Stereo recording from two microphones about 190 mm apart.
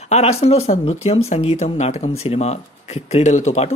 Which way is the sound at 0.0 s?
35° left (ahead or behind).